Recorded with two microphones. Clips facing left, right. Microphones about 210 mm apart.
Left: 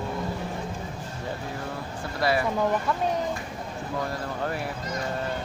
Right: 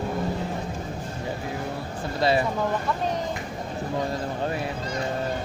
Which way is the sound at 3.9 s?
20° right (ahead or behind).